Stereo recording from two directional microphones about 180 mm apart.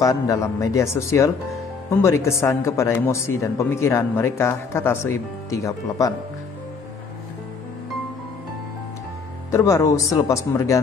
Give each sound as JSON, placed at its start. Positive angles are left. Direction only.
{"t": 0.0, "sound": "speech", "side_deg": 20}
{"t": 9.5, "sound": "speech", "side_deg": 15}